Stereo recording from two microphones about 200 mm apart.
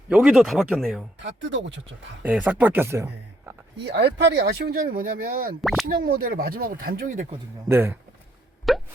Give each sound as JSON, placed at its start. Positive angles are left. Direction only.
{"t": 0.1, "sound": "speech", "side_deg": 0}
{"t": 1.2, "sound": "speech", "side_deg": -65}
{"t": 2.2, "sound": "speech", "side_deg": -5}
{"t": 3.8, "sound": "speech", "side_deg": -55}
{"t": 7.7, "sound": "speech", "side_deg": -10}
{"t": 8.7, "sound": "plop", "side_deg": 0}